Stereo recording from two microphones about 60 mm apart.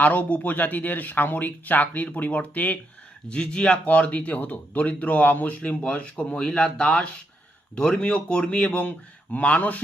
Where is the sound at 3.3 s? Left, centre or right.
Centre.